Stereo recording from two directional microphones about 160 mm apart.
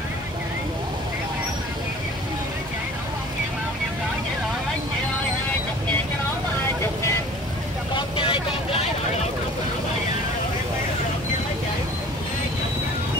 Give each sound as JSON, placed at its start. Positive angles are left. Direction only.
{"t": 7.9, "sound": "vehicle", "side_deg": 30}